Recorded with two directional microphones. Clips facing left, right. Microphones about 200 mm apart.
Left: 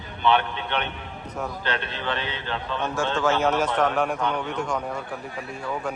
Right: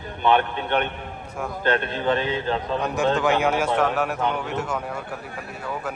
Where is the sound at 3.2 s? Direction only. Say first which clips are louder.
Right 1 dB; 15° right (ahead or behind).